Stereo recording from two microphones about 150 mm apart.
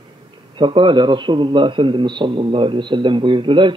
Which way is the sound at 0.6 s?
35° right (ahead or behind).